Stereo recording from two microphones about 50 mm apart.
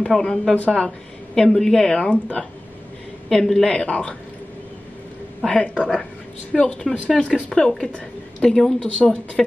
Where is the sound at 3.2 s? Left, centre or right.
Centre.